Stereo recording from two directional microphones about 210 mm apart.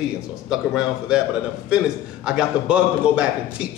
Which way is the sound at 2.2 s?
5° right (ahead or behind).